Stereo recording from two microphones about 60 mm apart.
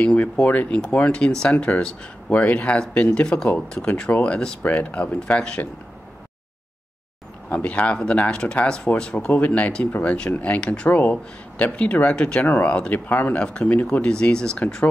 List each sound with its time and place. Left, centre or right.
0.0 s speech: left
7.5 s speech: left
9.3 s speech: left
12.4 s speech: left; by 14.6 s centre